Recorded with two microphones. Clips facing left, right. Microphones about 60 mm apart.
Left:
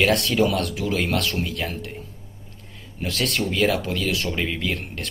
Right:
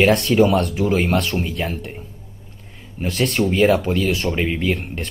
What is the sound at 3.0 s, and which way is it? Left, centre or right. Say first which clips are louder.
Speech: right 5 dB; right.